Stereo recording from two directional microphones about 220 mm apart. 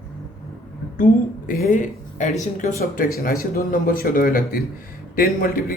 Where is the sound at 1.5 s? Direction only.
40° left (ahead or behind).